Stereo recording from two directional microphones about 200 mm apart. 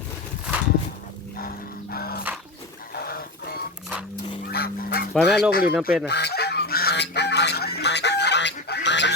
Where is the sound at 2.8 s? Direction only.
50° left (ahead or behind).